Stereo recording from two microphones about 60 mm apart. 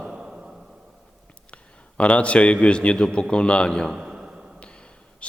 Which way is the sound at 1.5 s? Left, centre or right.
Left.